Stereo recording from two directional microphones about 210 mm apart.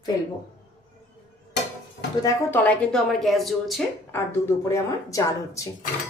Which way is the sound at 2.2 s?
10° left (ahead or behind).